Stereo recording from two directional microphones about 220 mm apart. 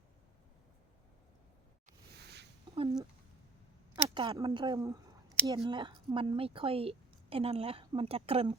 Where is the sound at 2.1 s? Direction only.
50° right (ahead or behind).